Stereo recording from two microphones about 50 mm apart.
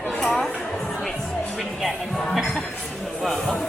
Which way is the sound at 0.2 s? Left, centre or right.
Centre.